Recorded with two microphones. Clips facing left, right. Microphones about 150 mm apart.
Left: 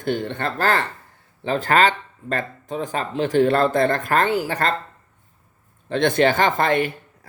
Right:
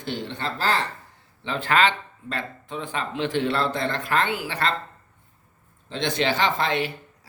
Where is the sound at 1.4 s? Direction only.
45° left (ahead or behind).